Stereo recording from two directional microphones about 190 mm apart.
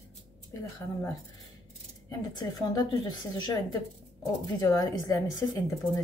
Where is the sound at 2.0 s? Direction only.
20° left (ahead or behind).